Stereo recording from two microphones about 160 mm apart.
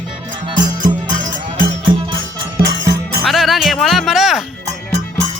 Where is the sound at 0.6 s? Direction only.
55° right (ahead or behind).